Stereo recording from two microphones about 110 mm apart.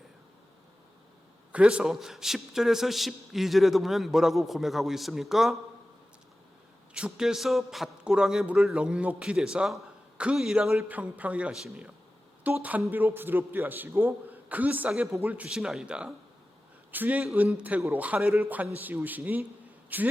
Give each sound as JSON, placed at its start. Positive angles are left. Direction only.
{"t": 1.5, "sound": "a man's voice", "side_deg": -10}
{"t": 6.9, "sound": "a man's voice", "side_deg": -5}